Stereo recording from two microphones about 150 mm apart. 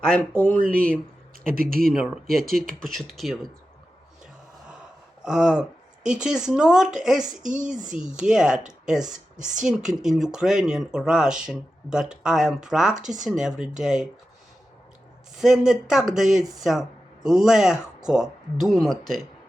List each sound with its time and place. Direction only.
0.0 s speech: 10° left (ahead or behind)
1.5 s speech: 75° right (ahead or behind)
2.8 s speech: centre (ahead or behind)
5.2 s speech: 5° right (ahead or behind)
7.4 s speech: 55° right (ahead or behind)
8.2 s speech: 5° right (ahead or behind)
15.4 s speech: centre (ahead or behind)